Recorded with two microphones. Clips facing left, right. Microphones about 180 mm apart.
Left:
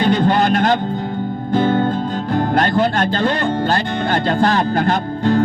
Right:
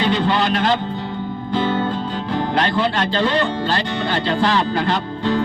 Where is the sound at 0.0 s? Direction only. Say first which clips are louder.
Left 3 dB; 50° left (ahead or behind).